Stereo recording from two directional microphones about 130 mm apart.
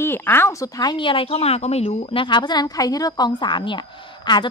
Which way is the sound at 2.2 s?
35° left (ahead or behind).